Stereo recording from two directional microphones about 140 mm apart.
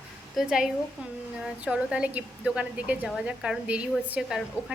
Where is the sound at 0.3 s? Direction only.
5° right (ahead or behind).